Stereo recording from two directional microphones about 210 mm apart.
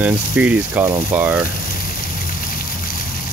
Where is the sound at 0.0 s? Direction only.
5° right (ahead or behind).